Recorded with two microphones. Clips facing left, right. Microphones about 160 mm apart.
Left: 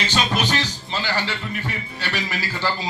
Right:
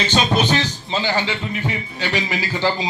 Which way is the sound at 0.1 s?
20° right (ahead or behind).